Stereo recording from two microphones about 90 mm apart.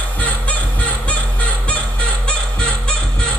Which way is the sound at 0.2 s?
15° left (ahead or behind).